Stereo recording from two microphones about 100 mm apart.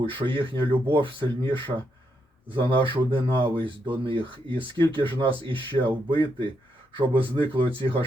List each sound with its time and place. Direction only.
0.0 s speech: 55° right (ahead or behind)